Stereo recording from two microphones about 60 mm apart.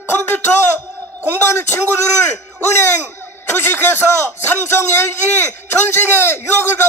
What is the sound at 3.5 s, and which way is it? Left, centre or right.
Speech, left.